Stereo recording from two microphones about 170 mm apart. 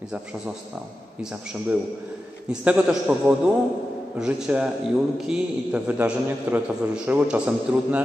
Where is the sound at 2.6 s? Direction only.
5° right (ahead or behind).